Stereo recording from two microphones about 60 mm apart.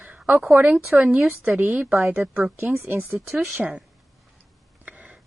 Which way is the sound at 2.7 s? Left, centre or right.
Right.